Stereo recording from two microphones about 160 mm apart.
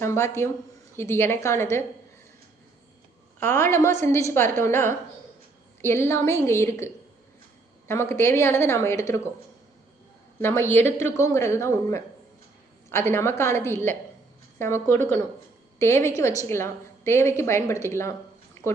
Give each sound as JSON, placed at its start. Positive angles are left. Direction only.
{"t": 0.0, "sound": "a woman's voice", "side_deg": 15}
{"t": 3.4, "sound": "a woman's voice", "side_deg": 15}
{"t": 10.4, "sound": "a woman's voice", "side_deg": 15}